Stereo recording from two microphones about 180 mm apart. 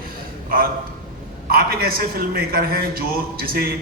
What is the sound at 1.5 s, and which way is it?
A man's voice, 55° right (ahead or behind).